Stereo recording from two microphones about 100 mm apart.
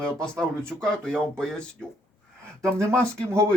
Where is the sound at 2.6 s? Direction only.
25° right (ahead or behind).